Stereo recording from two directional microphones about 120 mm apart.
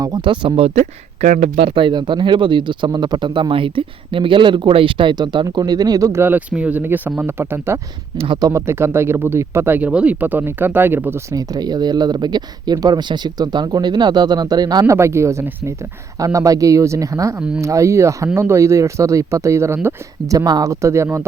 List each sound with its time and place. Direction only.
0.0 s speech: 40° right (ahead or behind); by 0.9 s 60° right (ahead or behind)
1.6 s speech: 45° right (ahead or behind); by 11.3 s 20° right (ahead or behind)
11.3 s speech: 35° right (ahead or behind)
14.9 s speech: 20° right (ahead or behind)